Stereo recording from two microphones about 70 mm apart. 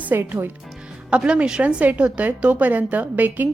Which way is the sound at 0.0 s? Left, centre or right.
Right.